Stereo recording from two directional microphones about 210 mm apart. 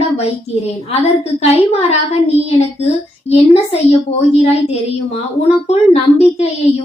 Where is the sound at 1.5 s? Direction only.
30° left (ahead or behind).